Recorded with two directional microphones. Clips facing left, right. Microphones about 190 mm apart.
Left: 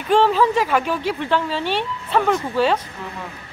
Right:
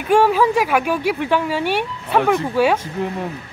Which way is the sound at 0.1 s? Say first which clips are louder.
Right 2 dB; 10° right (ahead or behind).